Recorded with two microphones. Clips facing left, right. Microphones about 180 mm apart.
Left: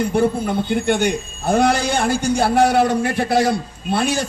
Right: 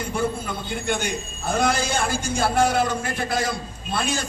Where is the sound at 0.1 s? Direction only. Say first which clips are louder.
Left 8 dB; 60° left (ahead or behind).